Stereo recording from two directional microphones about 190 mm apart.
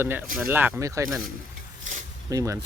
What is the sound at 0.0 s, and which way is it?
Speech, 10° right (ahead or behind).